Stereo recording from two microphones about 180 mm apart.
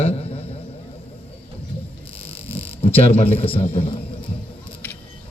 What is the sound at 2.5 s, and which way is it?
A man's voice, 35° left (ahead or behind).